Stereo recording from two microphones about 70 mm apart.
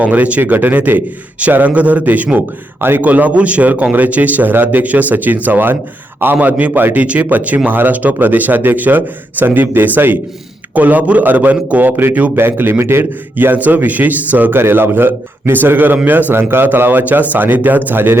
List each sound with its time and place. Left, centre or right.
0.0 s a man's voice: centre; by 13.1 s right
13.3 s a man's voice: right